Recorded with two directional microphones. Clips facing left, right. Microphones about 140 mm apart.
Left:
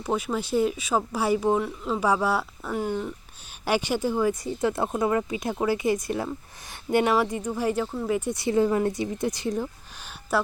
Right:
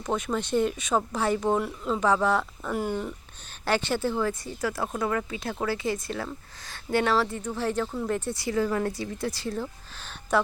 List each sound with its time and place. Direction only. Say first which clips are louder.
0.0 s speech: left 1 dB; 5° left (ahead or behind)
3.7 s speech: left 1 dB; 10° left (ahead or behind)
8.3 s speech: left 6 dB; 25° left (ahead or behind)
10.3 s speech: right 1 dB; 5° left (ahead or behind)